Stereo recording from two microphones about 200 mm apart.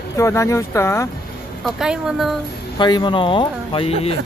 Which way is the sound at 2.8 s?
20° left (ahead or behind).